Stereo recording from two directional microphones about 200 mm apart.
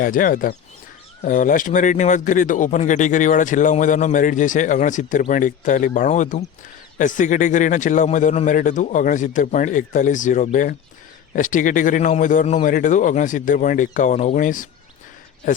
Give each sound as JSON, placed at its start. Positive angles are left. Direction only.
{"t": 0.0, "sound": "speech", "side_deg": 45}